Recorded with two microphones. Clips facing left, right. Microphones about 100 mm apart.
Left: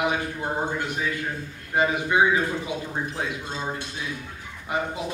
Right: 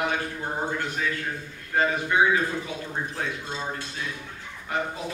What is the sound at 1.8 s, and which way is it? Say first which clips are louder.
Speech: left 1 dB; 15° left (ahead or behind).